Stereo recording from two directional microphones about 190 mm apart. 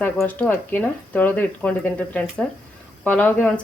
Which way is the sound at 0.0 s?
10° left (ahead or behind).